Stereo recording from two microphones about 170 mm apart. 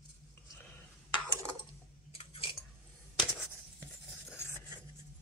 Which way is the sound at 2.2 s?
35° left (ahead or behind).